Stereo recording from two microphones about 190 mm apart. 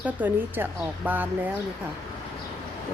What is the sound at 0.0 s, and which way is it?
A woman's voice, 10° right (ahead or behind).